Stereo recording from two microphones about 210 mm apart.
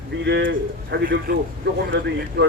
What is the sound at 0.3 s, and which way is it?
A man's voice, 55° right (ahead or behind).